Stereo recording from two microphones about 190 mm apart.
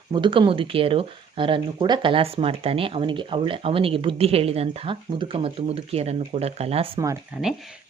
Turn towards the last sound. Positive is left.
turn(degrees=-5)  # may be behind; listen again after turning